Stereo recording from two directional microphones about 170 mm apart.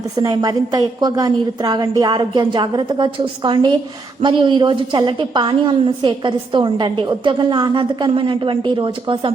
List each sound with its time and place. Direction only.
0.2 s a woman's voice: 20° right (ahead or behind)